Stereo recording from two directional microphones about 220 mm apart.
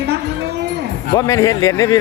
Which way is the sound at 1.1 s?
15° left (ahead or behind).